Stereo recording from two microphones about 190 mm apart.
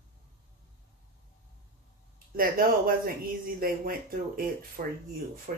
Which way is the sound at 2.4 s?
50° right (ahead or behind).